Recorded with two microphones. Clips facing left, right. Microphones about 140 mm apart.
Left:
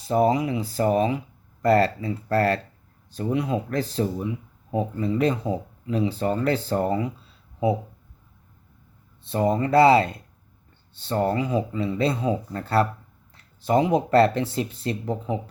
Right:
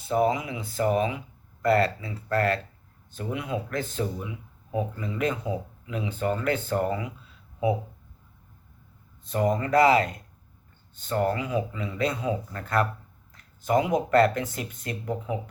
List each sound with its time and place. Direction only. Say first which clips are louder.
0.0 s speech: left 4 dB; 35° left (ahead or behind)
9.2 s speech: left 3 dB; 30° left (ahead or behind)